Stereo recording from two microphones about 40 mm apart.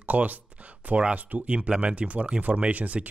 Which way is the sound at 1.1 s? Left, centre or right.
Right.